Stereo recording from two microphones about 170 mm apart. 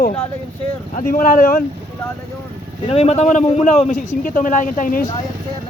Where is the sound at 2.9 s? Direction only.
40° left (ahead or behind).